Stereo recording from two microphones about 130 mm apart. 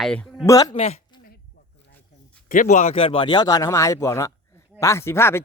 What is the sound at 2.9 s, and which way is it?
Speech, 45° left (ahead or behind).